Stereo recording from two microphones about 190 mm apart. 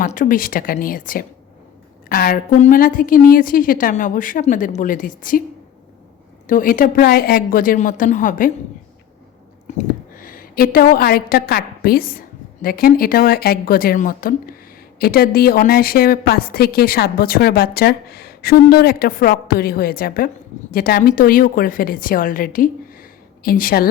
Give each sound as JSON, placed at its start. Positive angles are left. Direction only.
{"t": 0.0, "sound": "a woman's voice", "side_deg": 45}
{"t": 6.5, "sound": "a woman's voice", "side_deg": 45}
{"t": 9.6, "sound": "a woman's voice", "side_deg": 45}